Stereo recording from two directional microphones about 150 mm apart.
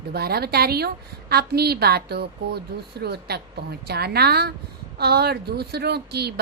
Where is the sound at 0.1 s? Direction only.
90° right.